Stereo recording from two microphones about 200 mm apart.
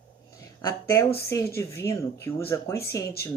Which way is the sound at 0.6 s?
15° left (ahead or behind).